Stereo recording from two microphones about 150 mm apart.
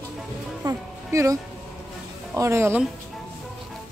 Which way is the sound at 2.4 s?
20° right (ahead or behind).